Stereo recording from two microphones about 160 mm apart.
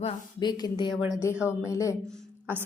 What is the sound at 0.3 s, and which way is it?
Speech, 25° left (ahead or behind).